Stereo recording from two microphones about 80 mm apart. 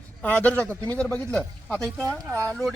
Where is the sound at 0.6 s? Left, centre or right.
Right.